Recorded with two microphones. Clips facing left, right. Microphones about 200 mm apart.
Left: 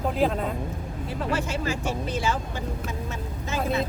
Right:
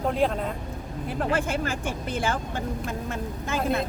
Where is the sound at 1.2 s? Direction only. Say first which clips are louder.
Right 2 dB; 55° right (ahead or behind).